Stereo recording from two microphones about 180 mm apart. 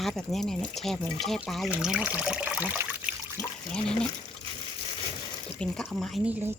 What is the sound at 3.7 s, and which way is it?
Speech, 5° left (ahead or behind).